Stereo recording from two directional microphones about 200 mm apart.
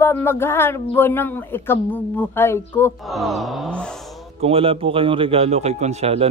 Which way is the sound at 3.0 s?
Centre (ahead or behind).